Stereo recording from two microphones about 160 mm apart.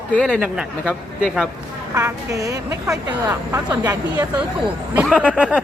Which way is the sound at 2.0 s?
20° right (ahead or behind).